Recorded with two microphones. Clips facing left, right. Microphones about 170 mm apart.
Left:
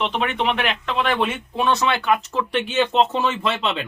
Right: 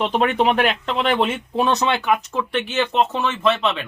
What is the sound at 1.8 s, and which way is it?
Speech, 20° right (ahead or behind).